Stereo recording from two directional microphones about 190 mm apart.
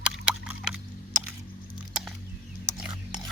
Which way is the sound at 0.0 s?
5° right (ahead or behind).